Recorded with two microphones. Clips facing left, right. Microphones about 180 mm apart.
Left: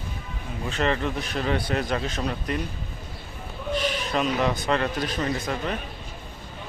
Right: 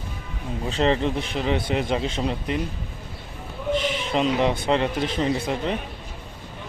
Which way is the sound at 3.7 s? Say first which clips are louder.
Right 1 dB; 25° right (ahead or behind).